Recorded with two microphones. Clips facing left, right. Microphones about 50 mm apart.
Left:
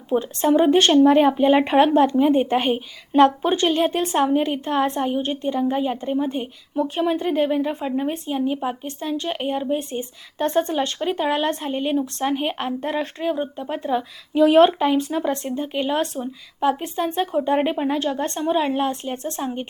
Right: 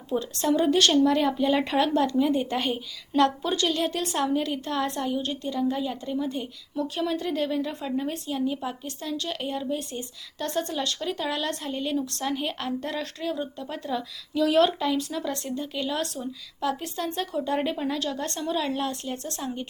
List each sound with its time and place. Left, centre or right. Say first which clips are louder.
0.1 s a woman's voice: left 6 dB; left